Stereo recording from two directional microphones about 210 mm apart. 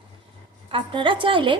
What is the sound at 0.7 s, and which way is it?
Speech, 25° right (ahead or behind).